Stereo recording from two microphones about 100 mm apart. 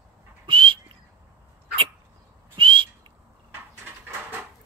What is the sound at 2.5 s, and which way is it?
Whistle, 55° right (ahead or behind).